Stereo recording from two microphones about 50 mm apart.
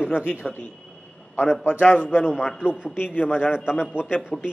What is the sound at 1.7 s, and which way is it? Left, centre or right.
Speech, left.